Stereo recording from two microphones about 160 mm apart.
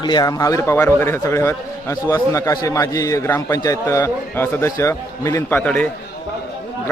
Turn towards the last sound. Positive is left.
turn(degrees=10)  # may be behind; listen again after turning